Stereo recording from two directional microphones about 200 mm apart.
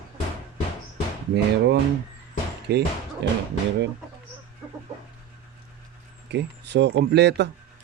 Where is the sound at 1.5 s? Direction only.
60° right (ahead or behind).